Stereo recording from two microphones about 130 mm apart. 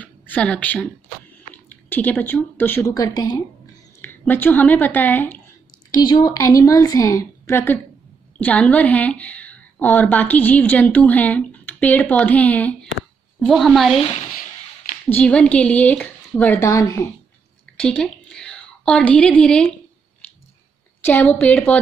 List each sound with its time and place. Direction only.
0.0 s a sound: 10° left (ahead or behind)
1.7 s a woman's voice: 15° left (ahead or behind)
2.9 s a woman's voice: 30° left (ahead or behind)
4.0 s speech: 15° left (ahead or behind)
5.9 s a woman's voice: 35° left (ahead or behind); by 12.7 s 10° left (ahead or behind)
13.4 s a woman's voice: centre (ahead or behind)
15.0 s a woman's voice: 10° left (ahead or behind)
16.7 s a woman's voice: 25° left (ahead or behind)
17.7 s a sound: 5° left (ahead or behind)
21.0 s a woman's voice: 15° left (ahead or behind)